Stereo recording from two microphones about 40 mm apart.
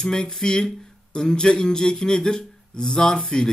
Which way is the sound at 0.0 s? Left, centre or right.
Centre.